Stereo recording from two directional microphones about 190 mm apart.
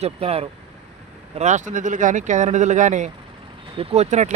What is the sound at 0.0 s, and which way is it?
Speech, 30° right (ahead or behind).